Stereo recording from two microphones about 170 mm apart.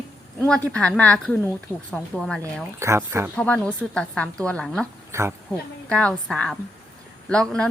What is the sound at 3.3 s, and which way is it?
A woman's voice, 10° left (ahead or behind).